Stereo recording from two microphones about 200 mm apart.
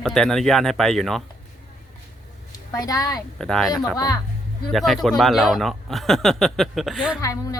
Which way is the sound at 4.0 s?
15° left (ahead or behind).